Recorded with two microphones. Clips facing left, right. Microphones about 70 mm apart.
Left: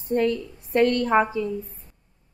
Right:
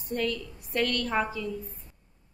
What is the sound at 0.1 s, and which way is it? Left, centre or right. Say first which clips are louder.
A woman's voice: left 8 dB; left.